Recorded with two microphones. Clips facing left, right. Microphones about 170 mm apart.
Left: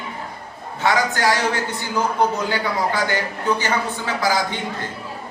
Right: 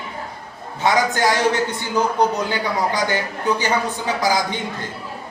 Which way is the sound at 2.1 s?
15° right (ahead or behind).